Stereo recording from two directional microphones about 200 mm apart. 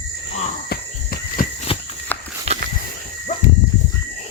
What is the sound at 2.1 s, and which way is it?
Walk, 10° left (ahead or behind).